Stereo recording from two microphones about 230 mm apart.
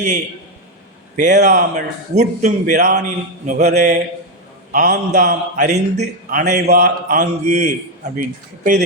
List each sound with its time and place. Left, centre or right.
1.1 s a man's voice: right